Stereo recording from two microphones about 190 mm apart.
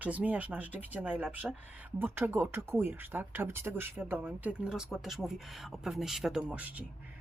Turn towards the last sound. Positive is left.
turn(degrees=-5)  # may be behind; listen again after turning